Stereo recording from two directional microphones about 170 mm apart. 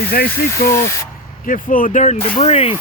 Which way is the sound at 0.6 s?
60° left (ahead or behind).